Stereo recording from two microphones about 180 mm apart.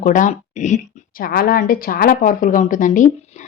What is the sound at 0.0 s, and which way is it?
Speech, 45° left (ahead or behind).